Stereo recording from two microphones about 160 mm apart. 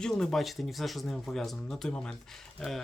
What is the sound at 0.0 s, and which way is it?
Speech, 5° left (ahead or behind).